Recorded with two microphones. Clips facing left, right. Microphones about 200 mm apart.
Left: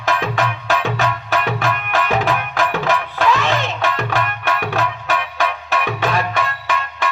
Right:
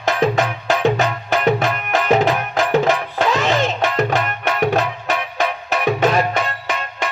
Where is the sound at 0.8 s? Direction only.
40° right (ahead or behind).